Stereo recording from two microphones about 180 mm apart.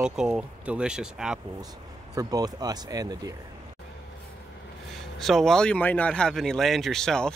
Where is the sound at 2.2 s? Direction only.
20° right (ahead or behind).